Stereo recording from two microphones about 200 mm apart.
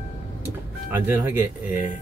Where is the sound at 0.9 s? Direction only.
10° right (ahead or behind).